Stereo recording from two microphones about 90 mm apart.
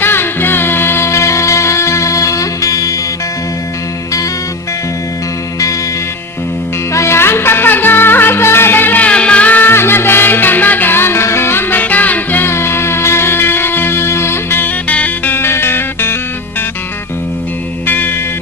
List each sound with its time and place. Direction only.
0.0 s music: 25° left (ahead or behind)
6.9 s music: 30° left (ahead or behind)
17.8 s music: 20° left (ahead or behind)